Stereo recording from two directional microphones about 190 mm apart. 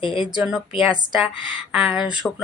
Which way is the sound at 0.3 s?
5° right (ahead or behind).